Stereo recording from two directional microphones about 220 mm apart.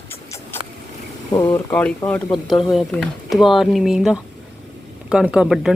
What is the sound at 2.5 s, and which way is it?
Speech, 20° left (ahead or behind).